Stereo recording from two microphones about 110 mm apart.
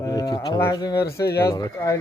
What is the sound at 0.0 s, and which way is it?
Livestock, 35° left (ahead or behind).